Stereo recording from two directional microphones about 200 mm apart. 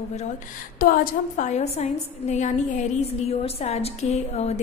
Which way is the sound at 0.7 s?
45° left (ahead or behind).